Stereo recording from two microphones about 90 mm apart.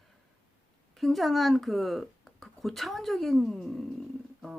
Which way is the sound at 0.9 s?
Centre (ahead or behind).